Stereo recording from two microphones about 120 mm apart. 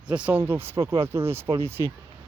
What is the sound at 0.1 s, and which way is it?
Speech, 10° right (ahead or behind).